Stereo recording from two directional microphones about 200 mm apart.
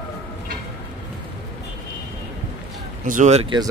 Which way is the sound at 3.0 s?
40° right (ahead or behind).